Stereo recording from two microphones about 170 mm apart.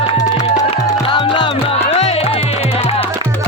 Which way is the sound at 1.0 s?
30° left (ahead or behind).